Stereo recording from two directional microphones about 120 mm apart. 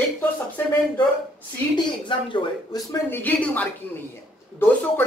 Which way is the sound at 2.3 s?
40° left (ahead or behind).